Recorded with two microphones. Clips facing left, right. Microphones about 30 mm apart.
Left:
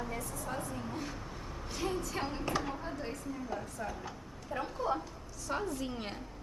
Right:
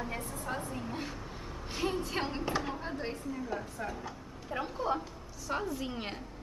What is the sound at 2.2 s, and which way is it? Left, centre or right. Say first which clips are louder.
Speech: right 2 dB; right.